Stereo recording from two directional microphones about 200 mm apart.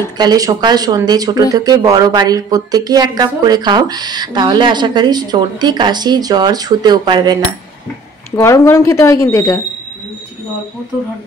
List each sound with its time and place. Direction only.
0.2 s speech: 20° right (ahead or behind)
8.4 s speech: 15° left (ahead or behind)